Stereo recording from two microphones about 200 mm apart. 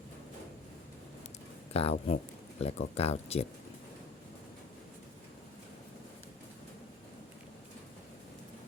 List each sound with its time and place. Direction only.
1.7 s speech: 30° left (ahead or behind)